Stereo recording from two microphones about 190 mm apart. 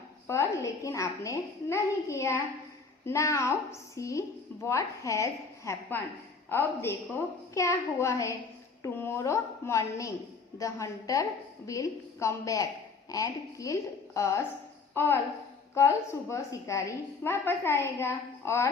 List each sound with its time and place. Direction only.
0.3 s a woman's voice: 15° left (ahead or behind)